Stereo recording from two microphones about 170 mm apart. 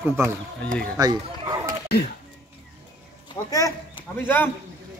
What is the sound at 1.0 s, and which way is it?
Bow-wow, 20° right (ahead or behind).